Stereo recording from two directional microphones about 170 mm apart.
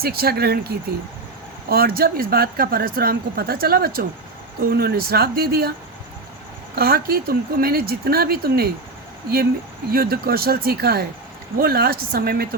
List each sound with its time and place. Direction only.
0.0 s speech: 65° right (ahead or behind)
6.7 s speech: 65° right (ahead or behind)
9.9 s speech: 65° right (ahead or behind)